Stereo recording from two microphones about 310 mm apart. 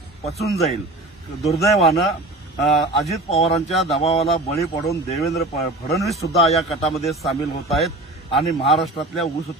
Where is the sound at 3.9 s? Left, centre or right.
Centre.